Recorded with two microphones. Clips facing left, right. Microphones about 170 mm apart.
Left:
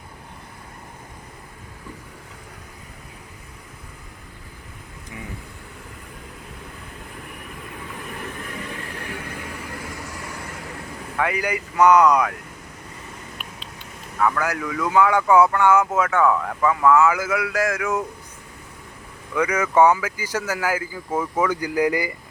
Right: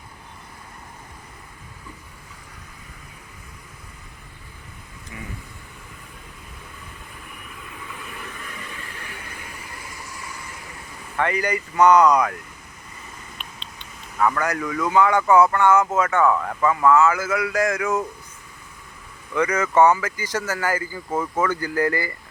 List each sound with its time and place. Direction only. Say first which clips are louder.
8.7 s vehicle: left 6 dB; 55° left (ahead or behind)
11.2 s speech: right 1 dB; 5° left (ahead or behind)
13.4 s a sound: left 2 dB; 5° left (ahead or behind)
14.2 s speech: even; centre (ahead or behind)
19.3 s speech: even; 10° left (ahead or behind)